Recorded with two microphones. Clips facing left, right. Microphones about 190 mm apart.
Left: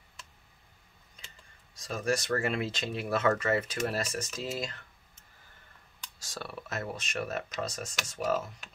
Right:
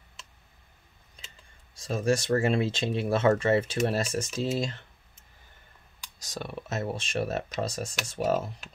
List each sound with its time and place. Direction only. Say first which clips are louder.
1.8 s speech: right 5 dB; 30° right (ahead or behind)
6.1 s speech: right 4 dB; 20° right (ahead or behind)